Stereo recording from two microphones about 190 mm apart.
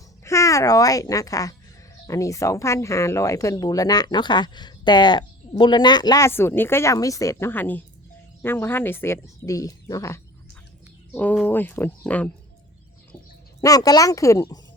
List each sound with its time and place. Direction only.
0.3 s speech: 15° left (ahead or behind)
13.6 s speech: 20° left (ahead or behind)